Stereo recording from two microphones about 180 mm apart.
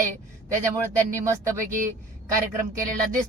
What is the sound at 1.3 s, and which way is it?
Speech, 15° right (ahead or behind).